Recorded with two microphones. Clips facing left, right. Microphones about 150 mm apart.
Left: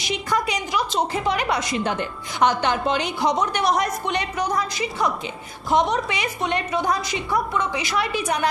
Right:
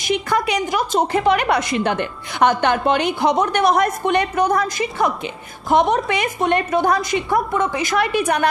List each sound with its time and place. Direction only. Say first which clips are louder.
0.0 s a woman's voice: right 4 dB; 60° right (ahead or behind)